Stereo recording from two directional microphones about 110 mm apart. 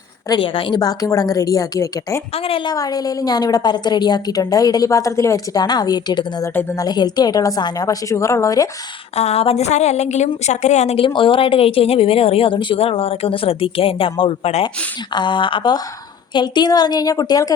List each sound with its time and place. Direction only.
0.3 s speech: 50° left (ahead or behind)
0.8 s a woman's voice: 35° left (ahead or behind)
2.3 s a woman's voice: 60° left (ahead or behind)
2.6 s a woman's voice: 35° left (ahead or behind)
6.5 s a woman's voice: 20° left (ahead or behind)
6.7 s a woman's voice: 40° left (ahead or behind)
9.1 s a woman's voice: 70° left (ahead or behind)
15.1 s a woman's voice: 45° left (ahead or behind)